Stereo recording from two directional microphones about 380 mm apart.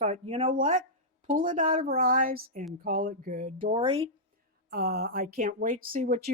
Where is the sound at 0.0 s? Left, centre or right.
Centre.